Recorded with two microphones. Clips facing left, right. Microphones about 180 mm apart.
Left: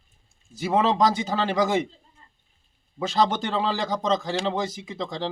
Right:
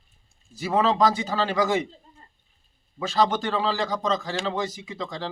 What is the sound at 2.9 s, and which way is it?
Speech, 20° left (ahead or behind).